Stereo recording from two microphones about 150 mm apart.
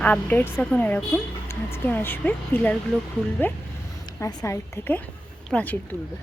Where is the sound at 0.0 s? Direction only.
10° left (ahead or behind).